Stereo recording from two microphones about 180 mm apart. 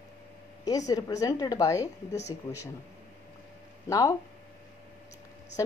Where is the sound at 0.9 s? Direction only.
20° left (ahead or behind).